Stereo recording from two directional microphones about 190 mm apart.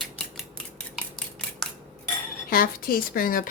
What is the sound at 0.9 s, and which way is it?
Scissors, centre (ahead or behind).